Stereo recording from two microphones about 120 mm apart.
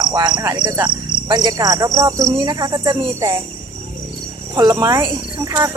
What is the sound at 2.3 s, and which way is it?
Speech, 35° right (ahead or behind).